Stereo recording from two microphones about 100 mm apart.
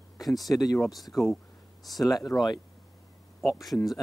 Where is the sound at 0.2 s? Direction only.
Centre (ahead or behind).